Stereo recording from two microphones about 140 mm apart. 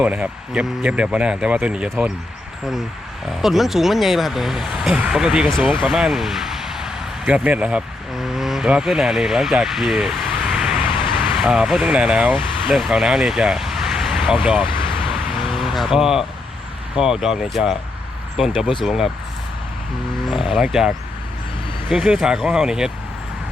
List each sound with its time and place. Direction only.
0.0 s speech: 10° right (ahead or behind)
3.4 s speech: centre (ahead or behind)
14.6 s a sound: 35° left (ahead or behind)
15.1 s car: centre (ahead or behind)
17.0 s speech: 5° right (ahead or behind)
20.3 s speech: 5° right (ahead or behind)